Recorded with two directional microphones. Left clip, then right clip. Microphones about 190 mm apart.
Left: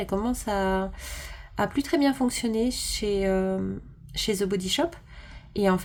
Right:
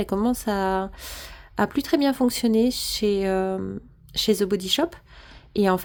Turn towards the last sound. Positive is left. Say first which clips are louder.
# right 3 dB
turn(degrees=-40)  # may be behind; listen again after turning